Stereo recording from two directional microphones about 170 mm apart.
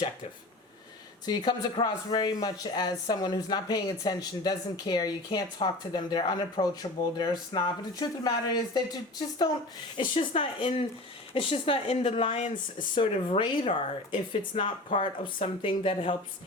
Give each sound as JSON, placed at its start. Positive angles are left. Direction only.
{"t": 1.2, "sound": "speech", "side_deg": 25}